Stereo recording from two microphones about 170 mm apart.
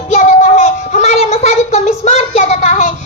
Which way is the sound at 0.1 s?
45° left (ahead or behind).